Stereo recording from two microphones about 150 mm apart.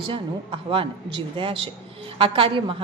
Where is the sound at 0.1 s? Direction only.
35° right (ahead or behind).